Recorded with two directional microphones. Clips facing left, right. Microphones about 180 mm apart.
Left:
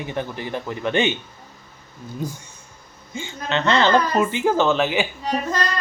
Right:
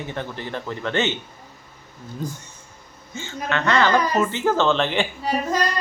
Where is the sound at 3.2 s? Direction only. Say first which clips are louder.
Left 1 dB; 20° left (ahead or behind).